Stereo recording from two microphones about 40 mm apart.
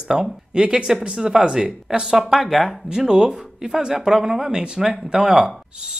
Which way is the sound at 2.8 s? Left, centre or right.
Centre.